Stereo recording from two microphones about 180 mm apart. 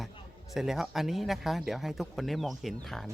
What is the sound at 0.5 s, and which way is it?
Speech, centre (ahead or behind).